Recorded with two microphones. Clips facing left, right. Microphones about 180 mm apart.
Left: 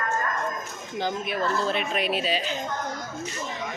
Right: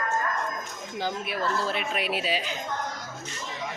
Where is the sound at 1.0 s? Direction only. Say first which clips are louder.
Left 2 dB; 5° right (ahead or behind).